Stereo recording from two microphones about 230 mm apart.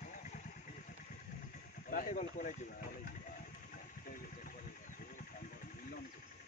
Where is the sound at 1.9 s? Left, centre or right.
Left.